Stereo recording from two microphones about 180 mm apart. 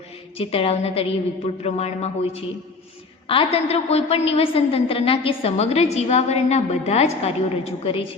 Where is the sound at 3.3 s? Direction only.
35° left (ahead or behind).